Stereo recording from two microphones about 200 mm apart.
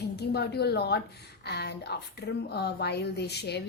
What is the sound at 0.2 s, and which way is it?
A woman's voice, 55° left (ahead or behind).